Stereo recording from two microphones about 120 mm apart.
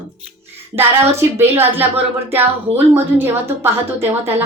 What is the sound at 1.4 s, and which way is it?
A woman's voice, 15° right (ahead or behind).